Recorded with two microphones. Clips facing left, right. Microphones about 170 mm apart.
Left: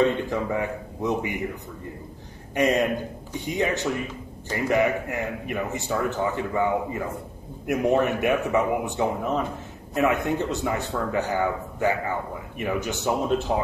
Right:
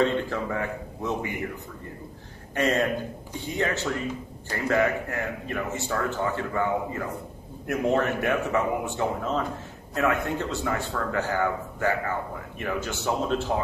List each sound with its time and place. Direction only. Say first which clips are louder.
0.0 s a man's voice: left 2 dB; 15° left (ahead or behind)
2.5 s a man's voice: left 2 dB; 15° left (ahead or behind)